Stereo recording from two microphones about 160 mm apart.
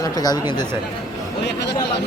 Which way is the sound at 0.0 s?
25° left (ahead or behind).